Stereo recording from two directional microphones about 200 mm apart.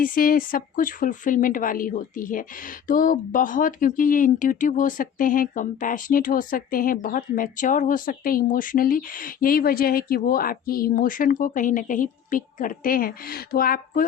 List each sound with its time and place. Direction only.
0.0 s speech: 45° left (ahead or behind)